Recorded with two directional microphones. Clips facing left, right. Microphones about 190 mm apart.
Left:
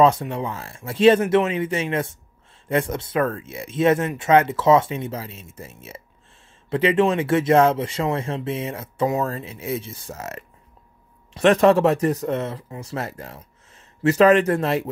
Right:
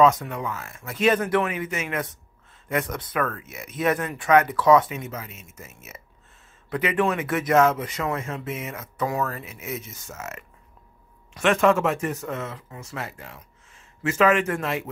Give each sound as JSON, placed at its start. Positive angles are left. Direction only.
{"t": 0.0, "sound": "speech", "side_deg": 30}